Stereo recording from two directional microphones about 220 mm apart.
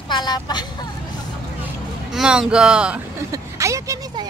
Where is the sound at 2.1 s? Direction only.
Centre (ahead or behind).